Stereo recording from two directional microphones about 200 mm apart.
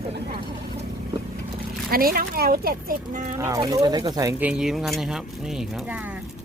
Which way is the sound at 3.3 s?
15° right (ahead or behind).